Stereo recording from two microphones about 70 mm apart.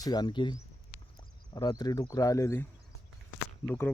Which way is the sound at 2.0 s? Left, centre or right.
Left.